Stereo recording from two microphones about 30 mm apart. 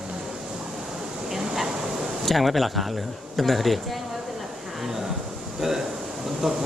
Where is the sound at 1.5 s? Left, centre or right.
Centre.